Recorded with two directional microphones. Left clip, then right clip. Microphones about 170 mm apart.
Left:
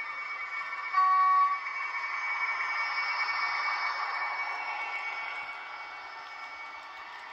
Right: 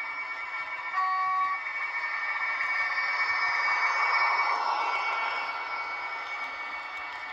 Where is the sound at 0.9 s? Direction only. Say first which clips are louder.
Left 4 dB; 10° left (ahead or behind).